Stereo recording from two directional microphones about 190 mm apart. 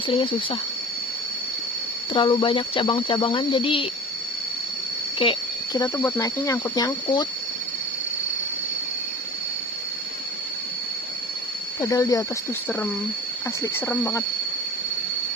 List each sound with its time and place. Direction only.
0.1 s speech: 25° left (ahead or behind)
2.1 s speech: 25° left (ahead or behind)
5.2 s speech: 20° left (ahead or behind)
11.8 s speech: 15° left (ahead or behind)
13.6 s speech: 10° left (ahead or behind)